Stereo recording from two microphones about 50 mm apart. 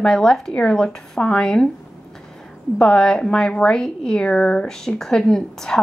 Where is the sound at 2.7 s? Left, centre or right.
Centre.